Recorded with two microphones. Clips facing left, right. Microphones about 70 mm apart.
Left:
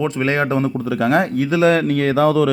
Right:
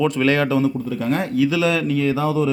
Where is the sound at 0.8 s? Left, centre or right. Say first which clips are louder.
Left 5 dB; left.